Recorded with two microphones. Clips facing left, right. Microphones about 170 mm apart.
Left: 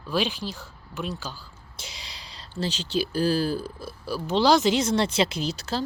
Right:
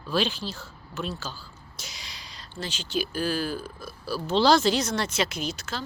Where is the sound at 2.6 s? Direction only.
35° left (ahead or behind).